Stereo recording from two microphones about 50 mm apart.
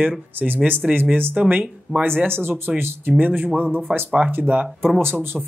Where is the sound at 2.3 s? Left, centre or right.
Right.